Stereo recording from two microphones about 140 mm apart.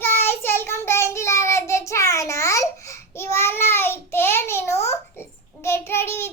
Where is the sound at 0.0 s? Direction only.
15° left (ahead or behind).